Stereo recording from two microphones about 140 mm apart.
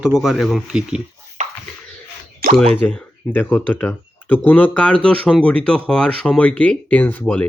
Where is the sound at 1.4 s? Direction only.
60° right (ahead or behind).